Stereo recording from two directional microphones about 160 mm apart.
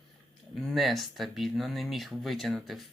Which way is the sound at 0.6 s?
Centre (ahead or behind).